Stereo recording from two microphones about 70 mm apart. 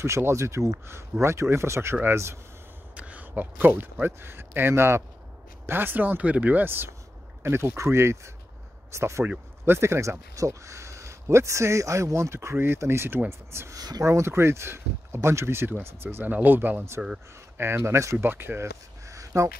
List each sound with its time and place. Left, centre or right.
0.0 s speech: right
3.0 s speech: right
9.2 s speech: right
9.8 s speech: right
13.7 s speech: right
14.0 s speech: right
18.1 s speech: right
19.0 s a sound: right